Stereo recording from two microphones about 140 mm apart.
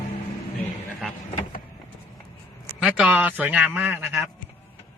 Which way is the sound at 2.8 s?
10° right (ahead or behind).